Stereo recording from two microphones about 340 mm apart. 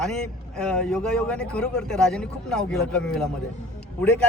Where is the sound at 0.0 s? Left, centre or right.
Centre.